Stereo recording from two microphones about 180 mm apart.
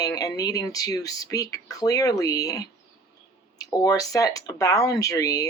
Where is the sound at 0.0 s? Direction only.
20° left (ahead or behind).